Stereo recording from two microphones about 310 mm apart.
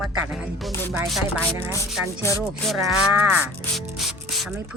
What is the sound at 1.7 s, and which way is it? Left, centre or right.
Speech, centre.